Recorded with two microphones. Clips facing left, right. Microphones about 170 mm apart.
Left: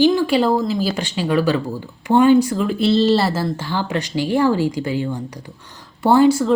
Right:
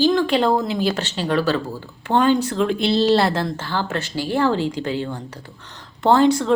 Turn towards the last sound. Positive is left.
turn(degrees=10)  # may be behind; listen again after turning